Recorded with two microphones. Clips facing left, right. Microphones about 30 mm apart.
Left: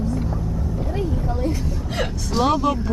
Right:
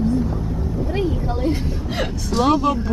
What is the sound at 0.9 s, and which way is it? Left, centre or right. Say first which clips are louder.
Speech: right 3 dB; right.